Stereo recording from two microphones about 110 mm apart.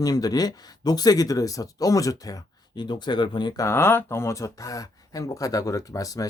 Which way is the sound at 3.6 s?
25° left (ahead or behind).